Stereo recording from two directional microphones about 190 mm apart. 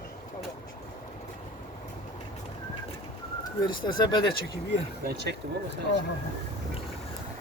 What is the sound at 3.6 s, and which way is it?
Speech, 25° left (ahead or behind).